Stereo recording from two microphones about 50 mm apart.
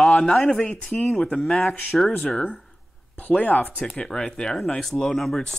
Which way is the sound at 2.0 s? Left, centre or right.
Centre.